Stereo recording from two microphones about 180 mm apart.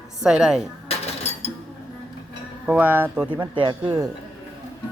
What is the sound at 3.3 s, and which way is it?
Speech, 25° right (ahead or behind).